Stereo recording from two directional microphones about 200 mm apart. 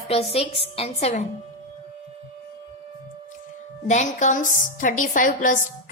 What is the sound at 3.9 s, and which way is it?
A woman's voice, 35° left (ahead or behind).